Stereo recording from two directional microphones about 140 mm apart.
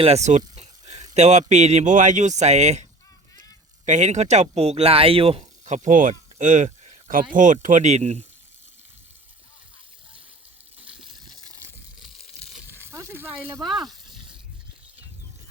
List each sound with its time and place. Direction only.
0.0 s a sound: 50° right (ahead or behind)
1.1 s speech: 55° right (ahead or behind)
3.8 s speech: 60° right (ahead or behind)
5.7 s speech: 65° right (ahead or behind)
6.7 s a sound: 50° right (ahead or behind)
7.1 s speech: 75° right (ahead or behind); by 8.2 s 50° right (ahead or behind)
10.8 s water: 5° right (ahead or behind)
11.3 s water: 25° right (ahead or behind)
12.6 s a sound: 15° right (ahead or behind)
13.4 s speech: centre (ahead or behind)